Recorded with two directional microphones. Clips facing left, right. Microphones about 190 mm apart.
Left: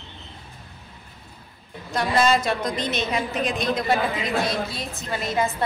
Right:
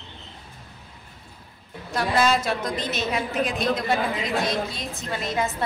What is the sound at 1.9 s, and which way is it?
A woman's voice, centre (ahead or behind).